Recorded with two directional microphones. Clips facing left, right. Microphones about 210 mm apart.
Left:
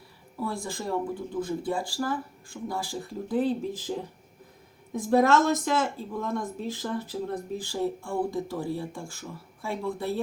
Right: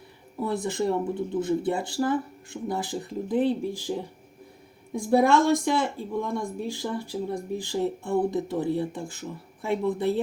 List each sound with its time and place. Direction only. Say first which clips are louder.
0.3 s speech: right 6 dB; 20° right (ahead or behind)
4.9 s speech: right 1 dB; 15° right (ahead or behind)